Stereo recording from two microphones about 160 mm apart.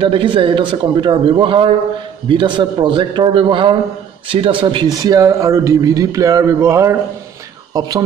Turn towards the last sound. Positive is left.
turn(degrees=-25)  # may be behind; listen again after turning